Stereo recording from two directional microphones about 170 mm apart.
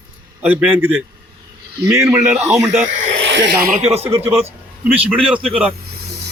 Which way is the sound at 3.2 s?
90° right.